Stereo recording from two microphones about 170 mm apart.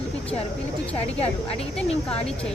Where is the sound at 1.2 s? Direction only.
35° left (ahead or behind).